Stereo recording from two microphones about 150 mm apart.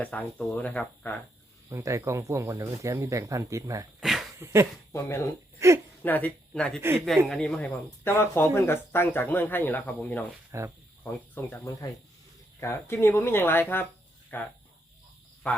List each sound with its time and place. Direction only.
0.0 s speech: 10° left (ahead or behind)
1.7 s speech: 20° right (ahead or behind)
4.0 s dog: centre (ahead or behind)
4.4 s speech: 20° right (ahead or behind)
4.9 s speech: 15° left (ahead or behind)
5.5 s speech: 20° right (ahead or behind)
6.0 s speech: 10° left (ahead or behind)
10.5 s speech: 20° right (ahead or behind)
11.0 s speech: 15° left (ahead or behind)